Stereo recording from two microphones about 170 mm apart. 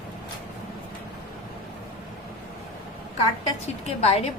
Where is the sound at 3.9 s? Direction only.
35° left (ahead or behind).